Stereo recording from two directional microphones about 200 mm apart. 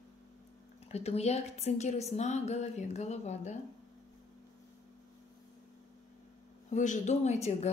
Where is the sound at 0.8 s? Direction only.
30° left (ahead or behind).